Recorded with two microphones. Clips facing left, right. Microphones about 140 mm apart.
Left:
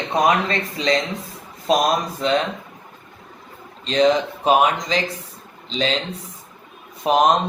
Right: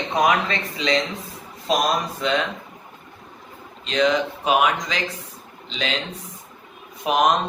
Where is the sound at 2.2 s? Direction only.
40° left (ahead or behind).